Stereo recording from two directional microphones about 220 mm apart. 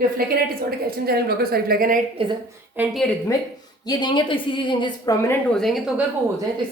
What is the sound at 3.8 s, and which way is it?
A woman's voice, 20° left (ahead or behind).